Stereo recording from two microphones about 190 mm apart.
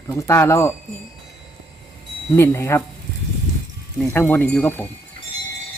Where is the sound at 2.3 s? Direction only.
15° left (ahead or behind).